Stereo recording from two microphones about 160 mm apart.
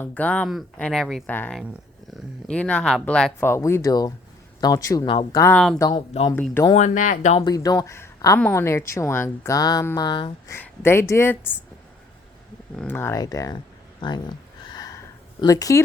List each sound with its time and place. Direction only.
0.0 s speech: 10° left (ahead or behind)
3.5 s speech: 20° left (ahead or behind)
5.0 s speech: 30° left (ahead or behind)
5.5 s speech: 5° left (ahead or behind)
5.9 s speech: 40° left (ahead or behind)
6.7 s speech: 50° left (ahead or behind)
7.3 s speech: 25° left (ahead or behind)
10.5 s speech: 15° left (ahead or behind)
12.7 s speech: 5° left (ahead or behind)
13.0 s speech: 20° left (ahead or behind)
14.0 s a sound: 25° left (ahead or behind)